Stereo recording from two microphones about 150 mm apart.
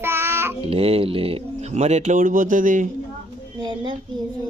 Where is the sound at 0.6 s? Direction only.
40° right (ahead or behind); by 2.9 s 60° right (ahead or behind).